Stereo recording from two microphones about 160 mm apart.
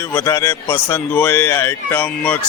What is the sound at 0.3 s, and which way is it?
Speech, 15° left (ahead or behind).